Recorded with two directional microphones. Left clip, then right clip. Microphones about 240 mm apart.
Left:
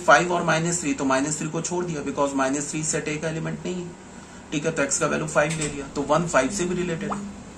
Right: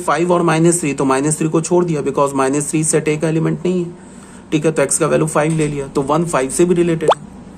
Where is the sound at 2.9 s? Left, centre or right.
Right.